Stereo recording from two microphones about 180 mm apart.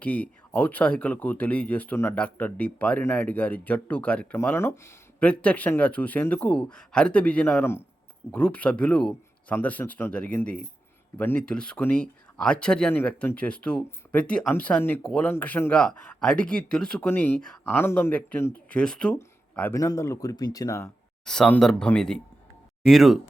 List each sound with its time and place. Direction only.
0.0 s speech: 10° left (ahead or behind)
21.2 s speech: 5° left (ahead or behind)